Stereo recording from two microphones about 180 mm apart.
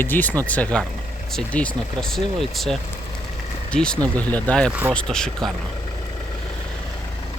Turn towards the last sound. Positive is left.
turn(degrees=5)  # may be behind; listen again after turning